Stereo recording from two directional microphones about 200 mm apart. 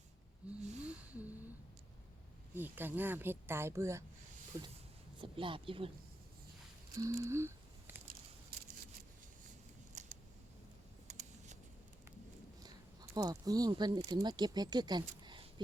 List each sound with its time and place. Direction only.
0.4 s gasp: 5° right (ahead or behind)
0.8 s a sound: 10° right (ahead or behind)
2.6 s speech: 10° right (ahead or behind); by 5.9 s 25° right (ahead or behind)
7.0 s a sound: 15° right (ahead or behind)
9.9 s scissors: 35° right (ahead or behind)
12.6 s speech: 20° right (ahead or behind)